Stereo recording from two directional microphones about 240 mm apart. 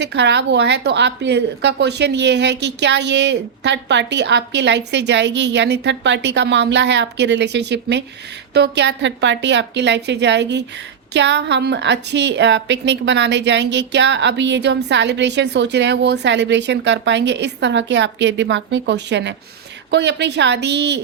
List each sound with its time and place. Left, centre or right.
0.0 s a woman's voice: right